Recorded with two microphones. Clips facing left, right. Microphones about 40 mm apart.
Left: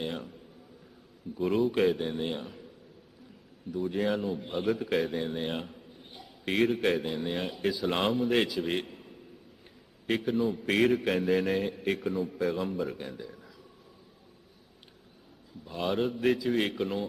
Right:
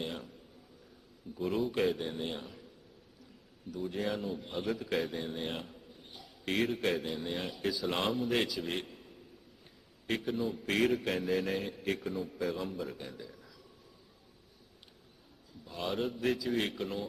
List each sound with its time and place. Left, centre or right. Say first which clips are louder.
0.0 s a man's voice: left 4 dB; centre
1.4 s a man's voice: left 5 dB; centre
3.8 s a man's voice: left 6 dB; centre
5.2 s a man's voice: left 5 dB; centre
8.0 s a man's voice: left 5 dB; centre
8.4 s a man's voice: left 6 dB; centre
8.8 s a sound: left 5 dB; centre
10.2 s a man's voice: left 6 dB; centre
15.6 s a man's voice: left 5 dB; centre